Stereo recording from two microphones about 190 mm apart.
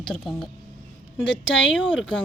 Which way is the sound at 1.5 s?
80° left.